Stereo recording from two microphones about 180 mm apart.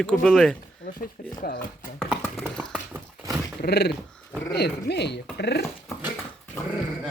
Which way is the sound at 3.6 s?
65° left (ahead or behind).